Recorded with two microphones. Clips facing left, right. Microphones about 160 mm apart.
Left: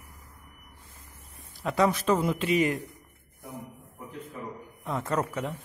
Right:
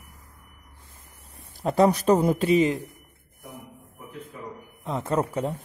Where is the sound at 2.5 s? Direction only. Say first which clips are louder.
Right 3 dB; 20° right (ahead or behind).